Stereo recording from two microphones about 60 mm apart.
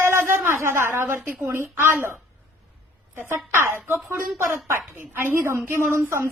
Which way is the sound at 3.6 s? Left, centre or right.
Right.